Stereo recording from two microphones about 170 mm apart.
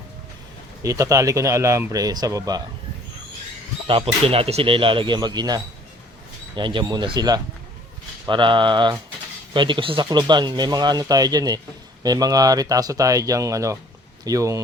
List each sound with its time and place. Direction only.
0.8 s speech: 20° right (ahead or behind)
3.8 s speech: 35° right (ahead or behind)